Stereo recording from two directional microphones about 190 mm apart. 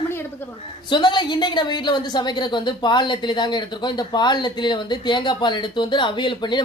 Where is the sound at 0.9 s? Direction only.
25° left (ahead or behind).